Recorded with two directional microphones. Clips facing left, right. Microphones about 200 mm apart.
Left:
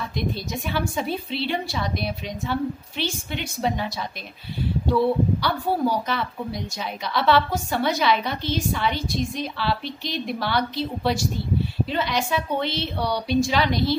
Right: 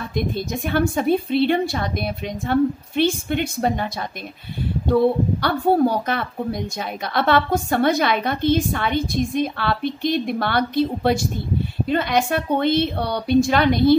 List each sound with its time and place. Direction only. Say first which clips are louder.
0.1 s speech: right 4 dB; 50° right (ahead or behind)